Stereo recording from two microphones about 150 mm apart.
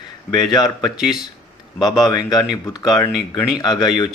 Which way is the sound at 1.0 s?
5° right (ahead or behind).